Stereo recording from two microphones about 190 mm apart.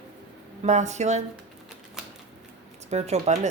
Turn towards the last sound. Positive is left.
turn(degrees=-35)  # may be behind; listen again after turning